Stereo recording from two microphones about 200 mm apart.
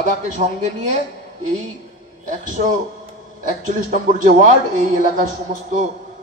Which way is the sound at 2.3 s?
40° right (ahead or behind).